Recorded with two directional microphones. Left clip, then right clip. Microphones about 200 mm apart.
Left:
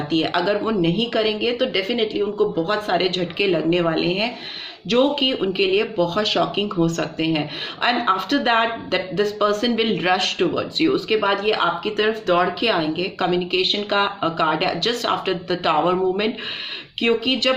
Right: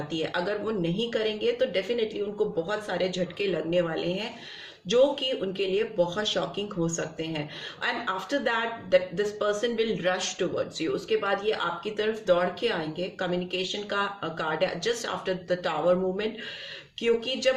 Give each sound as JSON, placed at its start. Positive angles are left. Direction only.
{"t": 0.1, "sound": "speech", "side_deg": 35}